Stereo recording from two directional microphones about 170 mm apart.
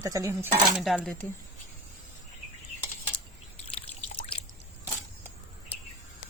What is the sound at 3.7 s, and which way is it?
Trickle, 40° left (ahead or behind).